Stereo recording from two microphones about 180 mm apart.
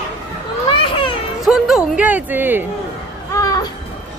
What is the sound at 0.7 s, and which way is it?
Children playing, 25° left (ahead or behind).